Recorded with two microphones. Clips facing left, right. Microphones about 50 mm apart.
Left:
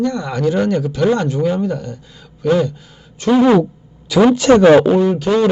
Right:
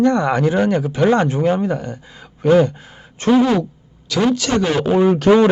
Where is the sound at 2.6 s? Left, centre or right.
Right.